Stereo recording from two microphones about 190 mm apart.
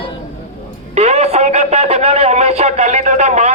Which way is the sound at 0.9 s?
35° right (ahead or behind).